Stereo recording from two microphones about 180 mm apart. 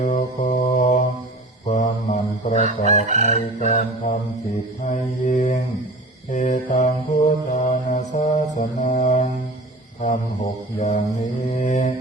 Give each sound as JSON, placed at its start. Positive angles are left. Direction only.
{"t": 0.0, "sound": "mantra", "side_deg": 40}